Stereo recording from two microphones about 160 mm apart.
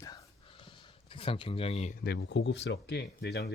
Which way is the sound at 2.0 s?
90° left.